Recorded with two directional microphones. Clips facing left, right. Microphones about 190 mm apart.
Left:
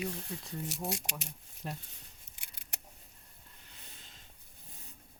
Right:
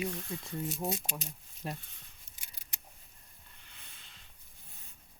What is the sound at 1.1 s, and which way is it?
Speech, 65° left (ahead or behind).